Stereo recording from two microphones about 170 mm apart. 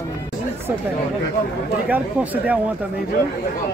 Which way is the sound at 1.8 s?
10° right (ahead or behind).